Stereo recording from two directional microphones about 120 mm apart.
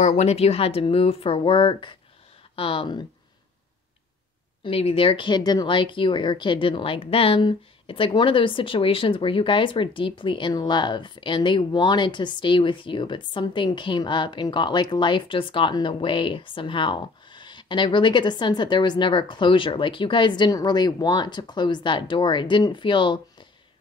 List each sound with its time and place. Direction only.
0.0 s speech: 65° left (ahead or behind); by 3.1 s 45° left (ahead or behind)
4.6 s speech: 55° left (ahead or behind)